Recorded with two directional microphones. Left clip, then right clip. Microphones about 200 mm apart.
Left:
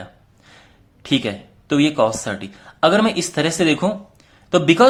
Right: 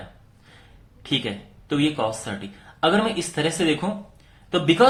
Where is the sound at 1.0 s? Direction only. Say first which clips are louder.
Left 5 dB; 45° left (ahead or behind).